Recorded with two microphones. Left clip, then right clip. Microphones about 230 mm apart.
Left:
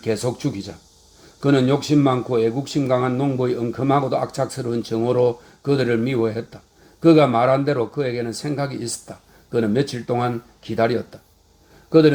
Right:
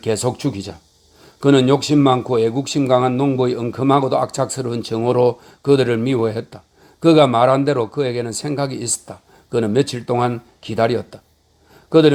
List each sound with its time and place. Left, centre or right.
0.0 s a man's voice: right